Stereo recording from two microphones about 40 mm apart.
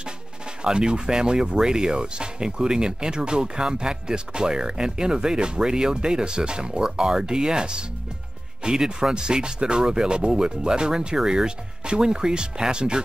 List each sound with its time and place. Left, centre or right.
0.7 s speech: right